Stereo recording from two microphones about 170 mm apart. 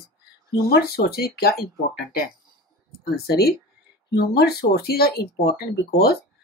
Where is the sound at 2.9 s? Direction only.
70° left (ahead or behind).